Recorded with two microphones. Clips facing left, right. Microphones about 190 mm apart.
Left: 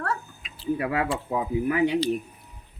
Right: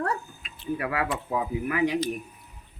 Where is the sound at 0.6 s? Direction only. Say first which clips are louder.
Left 3 dB; 25° left (ahead or behind).